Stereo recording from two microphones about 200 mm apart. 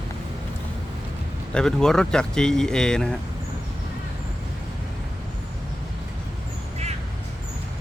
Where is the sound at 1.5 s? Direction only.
5° left (ahead or behind).